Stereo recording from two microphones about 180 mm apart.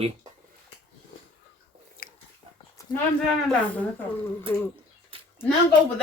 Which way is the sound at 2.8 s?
20° left (ahead or behind).